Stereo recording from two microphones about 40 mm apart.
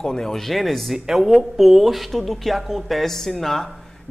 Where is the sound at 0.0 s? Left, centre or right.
Centre.